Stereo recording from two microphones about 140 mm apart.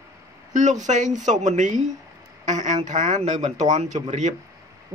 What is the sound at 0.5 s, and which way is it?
Speech, 60° right (ahead or behind).